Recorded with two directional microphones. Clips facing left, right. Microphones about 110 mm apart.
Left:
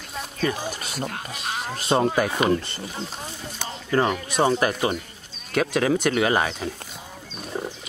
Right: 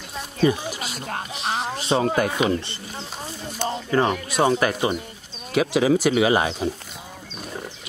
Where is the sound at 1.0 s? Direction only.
45° right (ahead or behind).